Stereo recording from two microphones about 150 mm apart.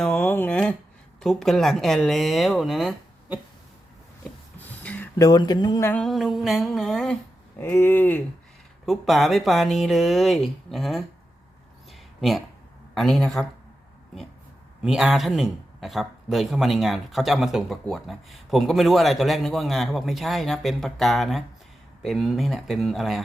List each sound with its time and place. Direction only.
0.0 s speech: 10° left (ahead or behind)
4.6 s a sound: 10° left (ahead or behind)
5.1 s speech: 25° left (ahead or behind)
5.8 s speech: 10° left (ahead or behind)
6.1 s speech: centre (ahead or behind)
7.6 s speech: 15° left (ahead or behind)
8.9 s speech: centre (ahead or behind)
11.9 s a sound: centre (ahead or behind)
12.9 s speech: centre (ahead or behind)
14.8 s speech: 5° right (ahead or behind)